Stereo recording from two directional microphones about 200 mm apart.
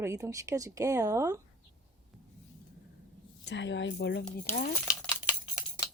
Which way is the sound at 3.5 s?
65° left (ahead or behind).